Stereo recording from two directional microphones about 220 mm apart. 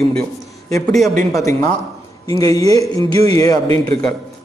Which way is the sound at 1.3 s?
15° left (ahead or behind).